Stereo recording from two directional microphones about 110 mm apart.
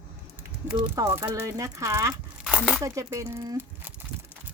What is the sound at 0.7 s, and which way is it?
Speech, 30° right (ahead or behind).